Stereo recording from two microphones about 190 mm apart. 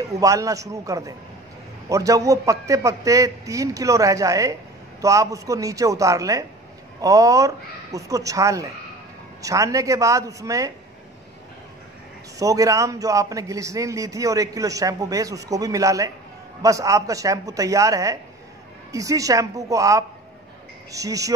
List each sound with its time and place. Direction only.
0.0 s a man's voice: 15° right (ahead or behind)
12.4 s a man's voice: 15° right (ahead or behind)